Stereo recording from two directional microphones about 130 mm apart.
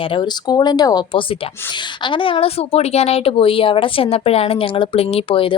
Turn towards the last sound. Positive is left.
turn(degrees=45)  # may be behind; listen again after turning